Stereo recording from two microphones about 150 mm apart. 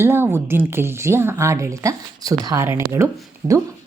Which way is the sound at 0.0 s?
15° right (ahead or behind).